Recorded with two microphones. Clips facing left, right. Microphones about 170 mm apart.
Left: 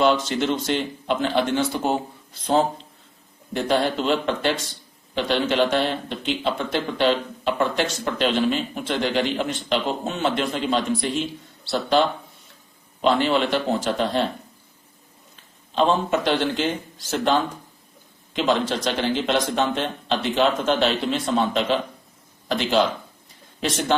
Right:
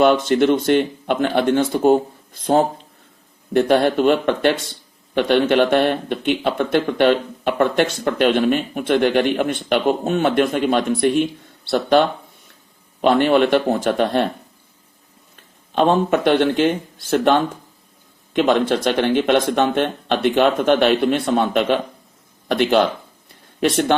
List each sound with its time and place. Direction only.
0.0 s speech: 55° right (ahead or behind)
15.7 s speech: 55° right (ahead or behind)
18.3 s speech: 55° right (ahead or behind)